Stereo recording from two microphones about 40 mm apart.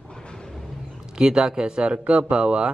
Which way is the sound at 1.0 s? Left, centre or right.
Centre.